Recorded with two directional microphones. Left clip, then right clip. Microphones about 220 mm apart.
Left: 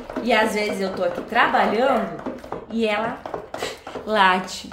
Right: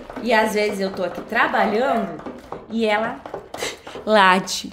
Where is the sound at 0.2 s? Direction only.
35° right (ahead or behind).